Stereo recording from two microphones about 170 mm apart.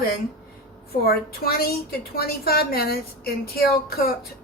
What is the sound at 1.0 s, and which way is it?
A woman's voice, 65° left (ahead or behind).